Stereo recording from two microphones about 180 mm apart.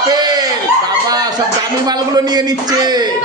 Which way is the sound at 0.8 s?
20° right (ahead or behind).